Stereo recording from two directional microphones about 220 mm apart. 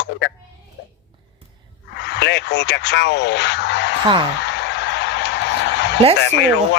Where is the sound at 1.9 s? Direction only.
50° left (ahead or behind).